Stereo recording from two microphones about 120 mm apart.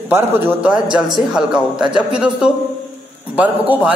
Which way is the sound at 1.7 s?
5° right (ahead or behind).